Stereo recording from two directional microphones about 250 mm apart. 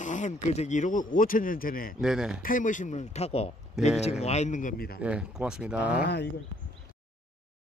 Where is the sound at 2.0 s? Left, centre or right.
Centre.